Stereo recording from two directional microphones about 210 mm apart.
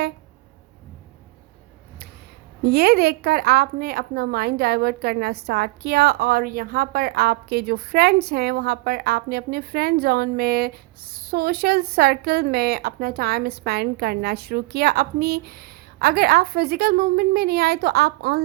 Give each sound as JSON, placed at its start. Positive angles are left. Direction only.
{"t": 2.6, "sound": "a woman's voice", "side_deg": -50}